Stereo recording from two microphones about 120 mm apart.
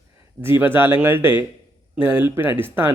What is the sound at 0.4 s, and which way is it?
Speech, 20° right (ahead or behind).